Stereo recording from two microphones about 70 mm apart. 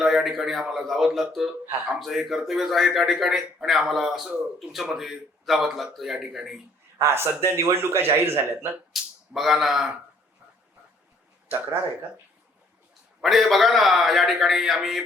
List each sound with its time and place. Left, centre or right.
0.0 s a man's voice: centre
7.0 s a man's voice: right
8.9 s speech: centre
13.2 s a man's voice: centre